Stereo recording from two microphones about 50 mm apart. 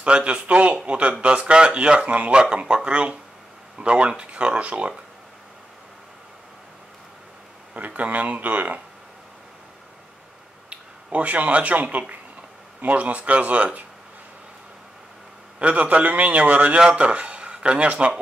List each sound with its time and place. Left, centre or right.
0.0 s speech: right
7.7 s speech: right
10.7 s speech: right
15.6 s speech: right